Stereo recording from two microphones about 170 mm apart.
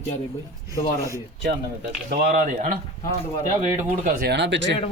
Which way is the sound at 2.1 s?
70° right (ahead or behind).